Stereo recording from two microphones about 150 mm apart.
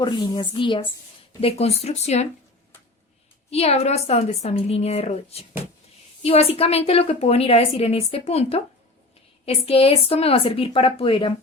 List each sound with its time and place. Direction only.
0.0 s a woman's voice: 30° left (ahead or behind); by 2.2 s 45° left (ahead or behind)
3.5 s a woman's voice: 45° left (ahead or behind)